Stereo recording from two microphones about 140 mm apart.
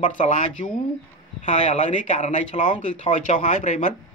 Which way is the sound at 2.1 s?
60° left (ahead or behind).